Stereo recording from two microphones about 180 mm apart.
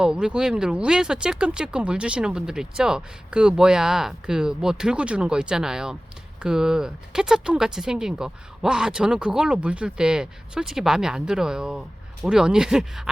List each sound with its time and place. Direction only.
0.0 s speech: 5° right (ahead or behind)